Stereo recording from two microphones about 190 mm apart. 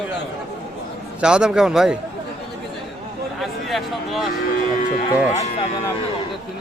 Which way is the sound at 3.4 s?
Centre (ahead or behind).